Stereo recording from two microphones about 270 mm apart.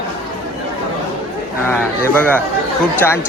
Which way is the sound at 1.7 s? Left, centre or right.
Centre.